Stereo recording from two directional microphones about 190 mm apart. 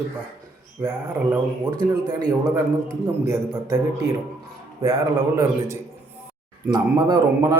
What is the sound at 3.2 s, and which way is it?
Speech, 15° right (ahead or behind).